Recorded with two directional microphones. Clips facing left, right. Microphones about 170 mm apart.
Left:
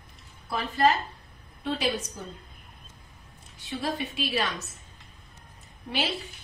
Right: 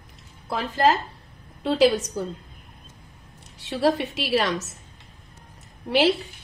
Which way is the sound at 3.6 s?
85° right.